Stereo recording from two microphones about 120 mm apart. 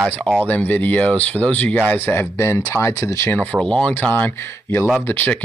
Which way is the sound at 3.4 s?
10° left (ahead or behind).